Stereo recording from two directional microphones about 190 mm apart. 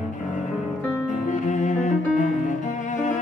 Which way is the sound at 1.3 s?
40° left (ahead or behind).